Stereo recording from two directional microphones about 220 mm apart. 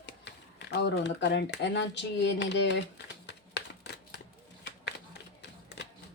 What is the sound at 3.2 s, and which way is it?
Typewriter, 50° left (ahead or behind).